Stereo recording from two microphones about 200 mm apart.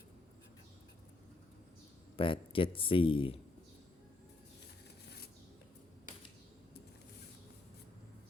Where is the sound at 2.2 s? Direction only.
25° left (ahead or behind).